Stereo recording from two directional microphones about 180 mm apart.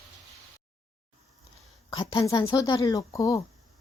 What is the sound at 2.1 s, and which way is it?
Speech, 20° left (ahead or behind).